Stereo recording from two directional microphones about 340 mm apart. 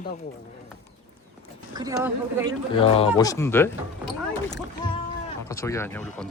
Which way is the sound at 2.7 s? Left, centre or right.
Centre.